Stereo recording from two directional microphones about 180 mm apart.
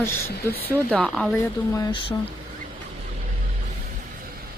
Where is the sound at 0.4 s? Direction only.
10° left (ahead or behind).